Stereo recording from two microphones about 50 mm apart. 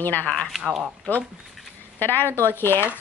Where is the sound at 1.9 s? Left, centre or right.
Left.